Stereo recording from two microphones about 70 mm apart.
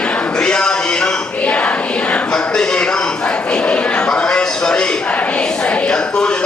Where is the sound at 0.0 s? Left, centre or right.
Centre.